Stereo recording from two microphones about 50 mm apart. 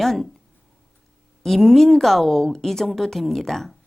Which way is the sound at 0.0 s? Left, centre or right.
Centre.